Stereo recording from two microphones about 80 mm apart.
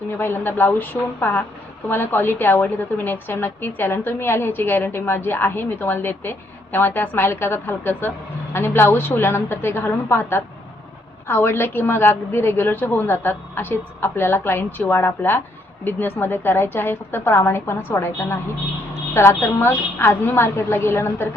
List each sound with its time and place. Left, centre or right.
0.2 s a woman's voice: left